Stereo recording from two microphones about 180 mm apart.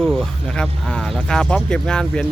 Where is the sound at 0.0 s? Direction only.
5° left (ahead or behind).